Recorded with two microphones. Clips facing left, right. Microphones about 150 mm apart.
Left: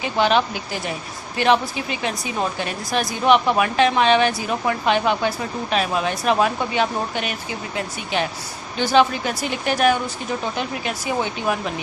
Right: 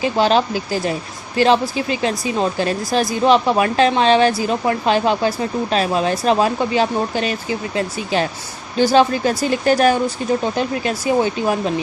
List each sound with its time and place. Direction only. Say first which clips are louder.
0.2 s a woman's voice: right 1 dB; 35° right (ahead or behind)
8.8 s a woman's voice: right 4 dB; 35° right (ahead or behind)